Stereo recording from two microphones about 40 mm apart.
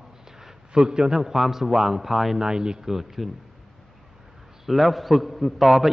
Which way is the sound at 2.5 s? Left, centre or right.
Centre.